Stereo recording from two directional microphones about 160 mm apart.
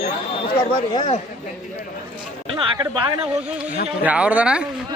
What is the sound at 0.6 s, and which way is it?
Speech, 30° left (ahead or behind).